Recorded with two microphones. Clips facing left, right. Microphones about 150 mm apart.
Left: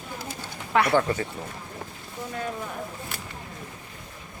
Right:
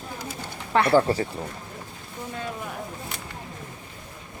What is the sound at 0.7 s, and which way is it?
Speech, 30° right (ahead or behind).